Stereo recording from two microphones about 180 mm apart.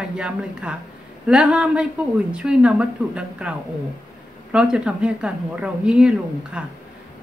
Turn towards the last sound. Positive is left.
turn(degrees=-5)  # may be behind; listen again after turning